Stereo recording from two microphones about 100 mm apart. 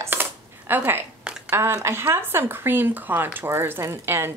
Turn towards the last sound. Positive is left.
turn(degrees=-25)  # may be behind; listen again after turning